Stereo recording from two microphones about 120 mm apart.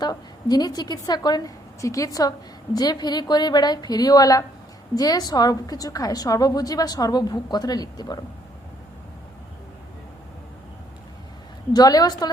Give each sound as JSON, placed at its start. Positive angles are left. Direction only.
{"t": 0.0, "sound": "a woman's voice", "side_deg": 35}
{"t": 11.7, "sound": "a woman's voice", "side_deg": 35}